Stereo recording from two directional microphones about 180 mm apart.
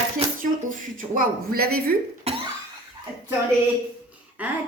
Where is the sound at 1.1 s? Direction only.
55° right (ahead or behind).